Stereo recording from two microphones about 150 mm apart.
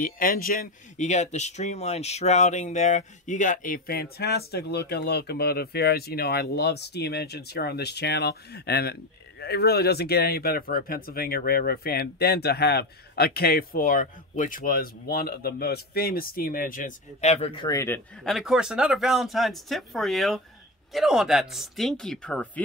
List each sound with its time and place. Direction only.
0.0 s a man's voice: 70° left (ahead or behind)
0.9 s speech: 50° left (ahead or behind)
17.6 s a man's voice: 20° left (ahead or behind)
18.2 s speech: centre (ahead or behind)